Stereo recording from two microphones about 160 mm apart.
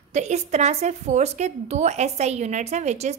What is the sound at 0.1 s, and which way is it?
A woman's voice, 45° right (ahead or behind).